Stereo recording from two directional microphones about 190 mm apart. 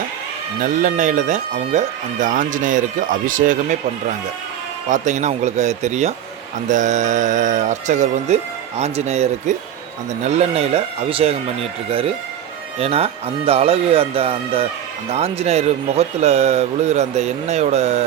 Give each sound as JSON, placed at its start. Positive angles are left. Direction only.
{"t": 0.6, "sound": "speech", "side_deg": -45}
{"t": 4.9, "sound": "speech", "side_deg": -40}